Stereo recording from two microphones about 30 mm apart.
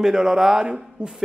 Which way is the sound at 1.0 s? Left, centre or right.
Right.